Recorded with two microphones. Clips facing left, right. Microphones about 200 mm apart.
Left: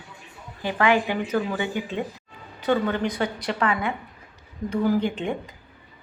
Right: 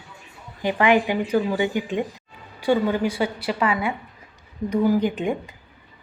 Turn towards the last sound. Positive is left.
turn(degrees=-15)  # may be behind; listen again after turning